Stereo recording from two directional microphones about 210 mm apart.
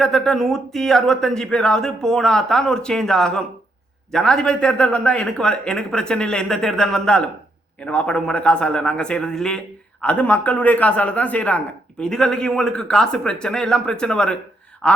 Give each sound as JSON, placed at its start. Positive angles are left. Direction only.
{"t": 0.0, "sound": "a man's voice", "side_deg": 0}